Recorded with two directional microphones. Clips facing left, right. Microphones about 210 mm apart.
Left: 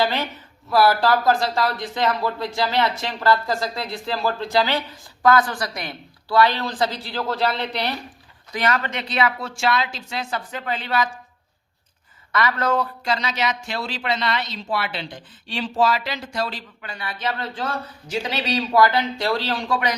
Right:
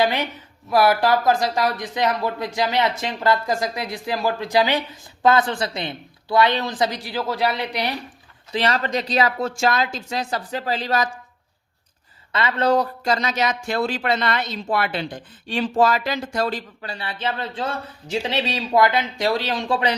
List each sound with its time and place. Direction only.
0.0 s speech: 15° right (ahead or behind)
8.5 s a woman's voice: 30° right (ahead or behind)
12.3 s speech: 25° right (ahead or behind); by 16.9 s 45° right (ahead or behind)
16.9 s speech: 30° right (ahead or behind)